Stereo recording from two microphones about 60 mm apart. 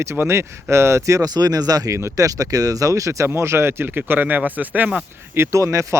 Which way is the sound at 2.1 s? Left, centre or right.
Right.